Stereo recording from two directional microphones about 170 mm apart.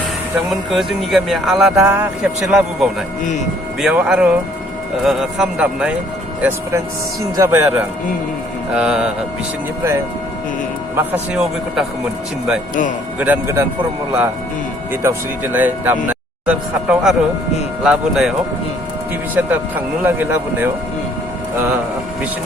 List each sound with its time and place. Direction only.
0.3 s speech: centre (ahead or behind)
1.8 s speech: 15° right (ahead or behind)
2.2 s speech: 5° right (ahead or behind)
6.4 s speech: 15° right (ahead or behind)
10.9 s speech: 5° right (ahead or behind)
13.1 s speech: 10° right (ahead or behind)
15.0 s speech: 10° right (ahead or behind)